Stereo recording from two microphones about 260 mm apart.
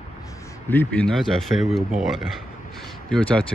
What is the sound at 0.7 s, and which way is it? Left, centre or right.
Speech, centre.